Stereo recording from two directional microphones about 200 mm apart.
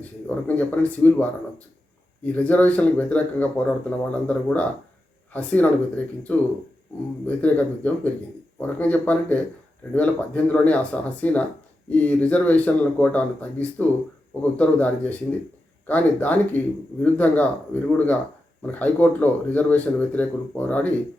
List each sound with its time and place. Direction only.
0.0 s speech: 10° left (ahead or behind)
7.3 s speech: 10° left (ahead or behind)